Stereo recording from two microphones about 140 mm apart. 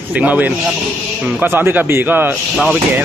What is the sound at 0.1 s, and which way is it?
Speech, 10° right (ahead or behind).